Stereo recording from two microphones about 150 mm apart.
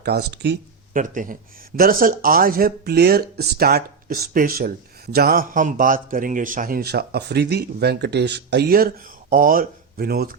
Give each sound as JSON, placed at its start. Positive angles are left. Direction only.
{"t": 0.0, "sound": "speech", "side_deg": -90}